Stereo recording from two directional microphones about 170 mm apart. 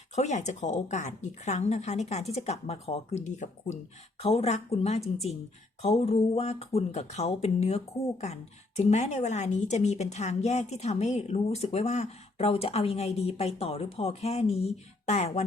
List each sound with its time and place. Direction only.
0.2 s a woman's voice: 45° left (ahead or behind)